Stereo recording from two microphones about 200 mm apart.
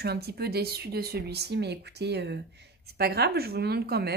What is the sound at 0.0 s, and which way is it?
A woman's voice, 55° right (ahead or behind).